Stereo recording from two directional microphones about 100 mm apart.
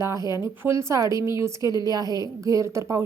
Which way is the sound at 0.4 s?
30° right (ahead or behind).